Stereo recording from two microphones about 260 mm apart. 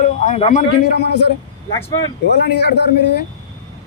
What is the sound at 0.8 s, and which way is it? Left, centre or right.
Speech, left.